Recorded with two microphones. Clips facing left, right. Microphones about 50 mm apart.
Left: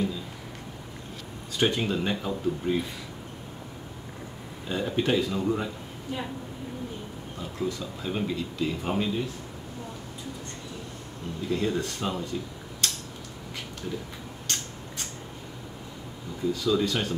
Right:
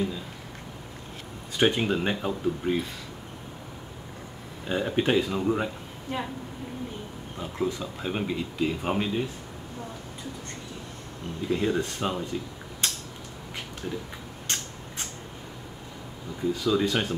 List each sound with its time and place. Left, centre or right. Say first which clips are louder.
1.6 s speech: right 2 dB; right
4.6 s speech: right 1 dB; right
7.3 s speech: right 2 dB; right
11.5 s speech: right 2 dB; right
12.8 s a sound: even; centre
14.5 s a sound: right 1 dB; right
16.5 s speech: right 1 dB; centre